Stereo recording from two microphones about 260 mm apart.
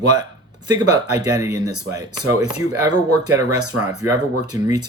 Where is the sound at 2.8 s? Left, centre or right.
Right.